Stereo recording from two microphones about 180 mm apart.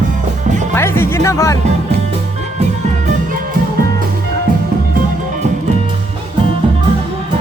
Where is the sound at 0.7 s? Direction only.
15° left (ahead or behind).